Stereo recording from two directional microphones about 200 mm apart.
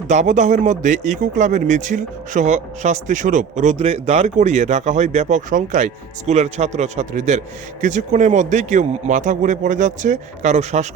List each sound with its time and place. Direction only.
0.1 s a man's voice: 35° right (ahead or behind)